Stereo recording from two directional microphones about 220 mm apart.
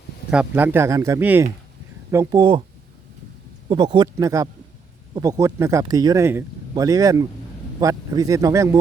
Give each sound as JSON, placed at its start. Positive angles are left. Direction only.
{"t": 0.3, "sound": "speech", "side_deg": -5}
{"t": 3.7, "sound": "speech", "side_deg": -20}